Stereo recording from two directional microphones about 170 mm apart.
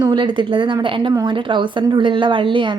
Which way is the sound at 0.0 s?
25° right (ahead or behind).